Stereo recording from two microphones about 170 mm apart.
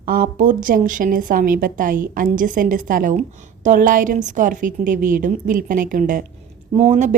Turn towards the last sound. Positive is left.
turn(degrees=-40)  # may be behind; listen again after turning